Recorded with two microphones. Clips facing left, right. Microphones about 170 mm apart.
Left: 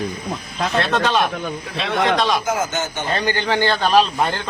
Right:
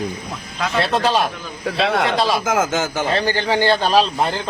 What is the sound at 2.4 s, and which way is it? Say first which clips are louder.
Speech: right 3 dB; 90° right.